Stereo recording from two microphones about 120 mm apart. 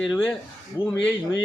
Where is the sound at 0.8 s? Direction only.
30° left (ahead or behind).